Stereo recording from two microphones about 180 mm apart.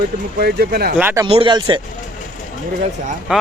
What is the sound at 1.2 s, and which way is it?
Speech, 30° right (ahead or behind).